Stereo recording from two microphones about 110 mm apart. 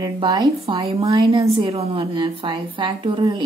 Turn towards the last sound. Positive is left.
turn(degrees=-45)  # may be behind; listen again after turning